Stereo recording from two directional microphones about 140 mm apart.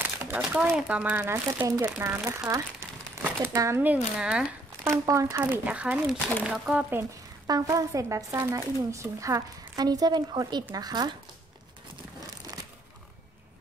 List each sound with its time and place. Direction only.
0.3 s speech: 10° right (ahead or behind)
4.8 s speech: 20° right (ahead or behind)
5.4 s speech: 10° right (ahead or behind)
7.4 s speech: 25° right (ahead or behind)